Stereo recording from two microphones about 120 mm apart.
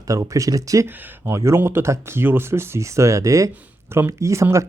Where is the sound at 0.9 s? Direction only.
15° right (ahead or behind).